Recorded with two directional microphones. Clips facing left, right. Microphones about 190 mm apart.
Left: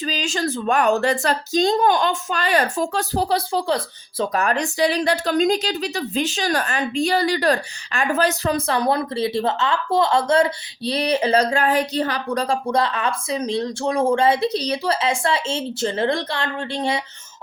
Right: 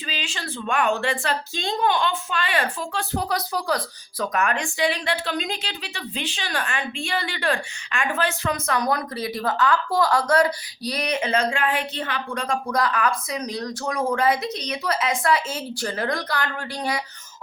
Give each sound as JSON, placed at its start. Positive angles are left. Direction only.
{"t": 0.0, "sound": "speech", "side_deg": 40}